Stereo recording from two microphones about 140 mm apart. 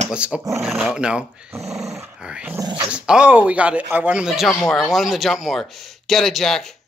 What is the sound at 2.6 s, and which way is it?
Speech, 30° right (ahead or behind).